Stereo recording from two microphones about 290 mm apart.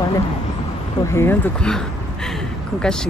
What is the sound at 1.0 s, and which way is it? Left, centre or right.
Speech, centre.